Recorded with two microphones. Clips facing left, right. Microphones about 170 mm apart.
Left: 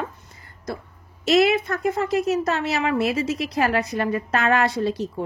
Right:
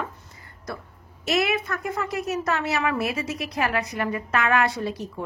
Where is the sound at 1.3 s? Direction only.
30° left (ahead or behind).